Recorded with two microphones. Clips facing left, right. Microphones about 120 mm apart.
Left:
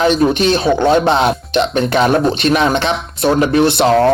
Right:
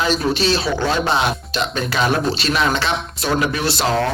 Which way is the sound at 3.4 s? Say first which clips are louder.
Left 9 dB; 30° left (ahead or behind).